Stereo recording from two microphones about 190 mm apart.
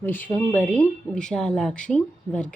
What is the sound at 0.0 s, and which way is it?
A woman's voice, 10° left (ahead or behind).